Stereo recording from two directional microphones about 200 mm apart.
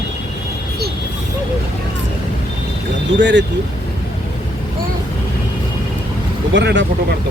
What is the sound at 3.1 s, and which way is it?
Speech, 65° right (ahead or behind).